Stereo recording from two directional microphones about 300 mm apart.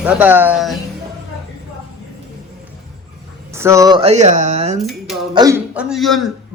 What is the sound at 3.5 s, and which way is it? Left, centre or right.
Speech, centre.